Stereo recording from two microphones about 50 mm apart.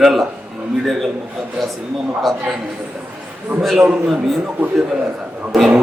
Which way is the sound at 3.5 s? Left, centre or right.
Right.